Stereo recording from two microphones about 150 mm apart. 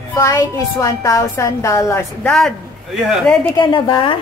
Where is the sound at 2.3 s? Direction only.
Centre (ahead or behind).